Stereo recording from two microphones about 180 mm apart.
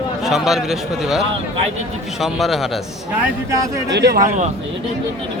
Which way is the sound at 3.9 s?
65° right (ahead or behind).